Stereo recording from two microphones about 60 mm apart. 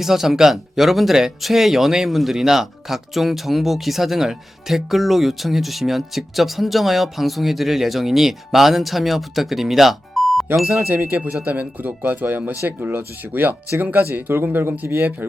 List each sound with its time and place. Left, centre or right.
0.0 s speech: centre
11.4 s speech: right